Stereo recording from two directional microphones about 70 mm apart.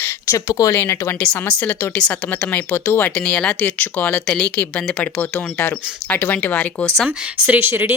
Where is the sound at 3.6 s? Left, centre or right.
Left.